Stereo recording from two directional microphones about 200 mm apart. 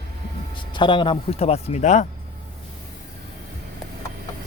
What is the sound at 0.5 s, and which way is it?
Speech, 25° left (ahead or behind).